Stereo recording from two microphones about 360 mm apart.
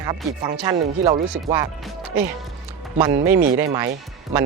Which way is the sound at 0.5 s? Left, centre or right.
Centre.